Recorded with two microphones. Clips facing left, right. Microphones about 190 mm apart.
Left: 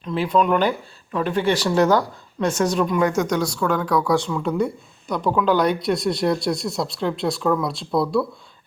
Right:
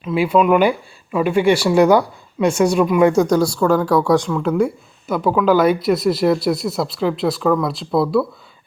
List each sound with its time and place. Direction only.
0.0 s speech: 10° right (ahead or behind)
3.0 s speech: 30° right (ahead or behind)
4.3 s speech: 5° right (ahead or behind)